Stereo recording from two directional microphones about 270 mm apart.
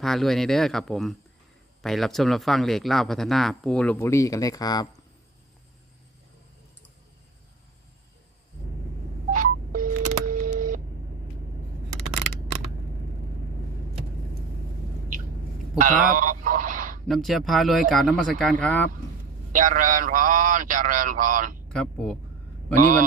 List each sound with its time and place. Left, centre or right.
0.0 s speech: centre
9.3 s telephone dialing: right
10.2 s a sound: right
15.8 s a sound: right
17.1 s speech: centre
19.5 s speech: right
21.7 s speech: centre
22.8 s speech: right